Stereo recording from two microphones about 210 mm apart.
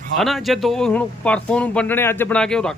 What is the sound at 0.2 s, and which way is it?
A man's voice, centre (ahead or behind).